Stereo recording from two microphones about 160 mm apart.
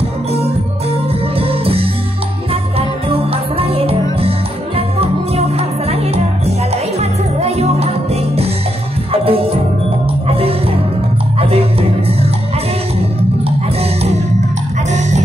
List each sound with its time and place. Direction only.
1.4 s music: 35° right (ahead or behind)
3.1 s music: 35° right (ahead or behind)
7.0 s jingle bell: 40° right (ahead or behind)
9.1 s music: 35° right (ahead or behind)
14.9 s music: 45° right (ahead or behind)